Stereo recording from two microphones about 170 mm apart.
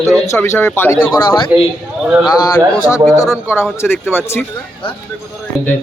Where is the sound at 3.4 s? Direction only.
15° left (ahead or behind).